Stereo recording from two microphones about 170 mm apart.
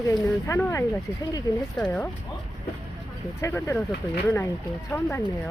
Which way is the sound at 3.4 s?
15° left (ahead or behind).